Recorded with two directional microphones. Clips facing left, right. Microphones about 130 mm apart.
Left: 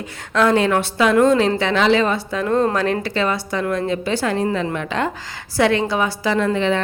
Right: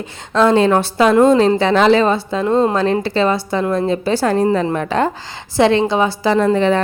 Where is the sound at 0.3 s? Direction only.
30° right (ahead or behind).